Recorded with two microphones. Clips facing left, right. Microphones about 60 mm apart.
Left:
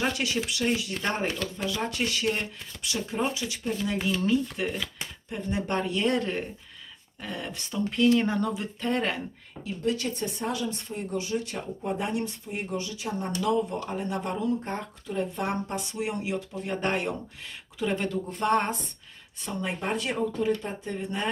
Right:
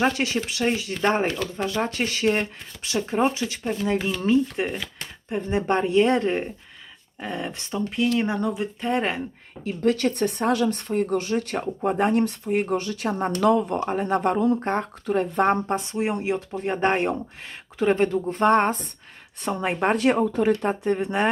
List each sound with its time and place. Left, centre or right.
0.0 s speech: right
7.9 s speech: centre
8.8 s speech: centre
9.6 s speech: right
19.4 s speech: right